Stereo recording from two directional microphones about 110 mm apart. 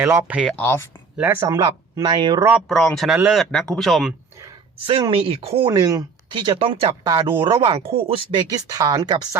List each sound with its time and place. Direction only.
0.5 s speech: 20° left (ahead or behind)
1.1 s speech: 15° right (ahead or behind)
1.4 s speech: 35° right (ahead or behind)
2.5 s speech: centre (ahead or behind)
4.8 s speech: 55° right (ahead or behind)
5.6 s speech: 35° right (ahead or behind); by 6.9 s 55° right (ahead or behind)
7.0 s speech: 40° right (ahead or behind)
7.6 s speech: 60° right (ahead or behind); by 9.3 s 35° right (ahead or behind)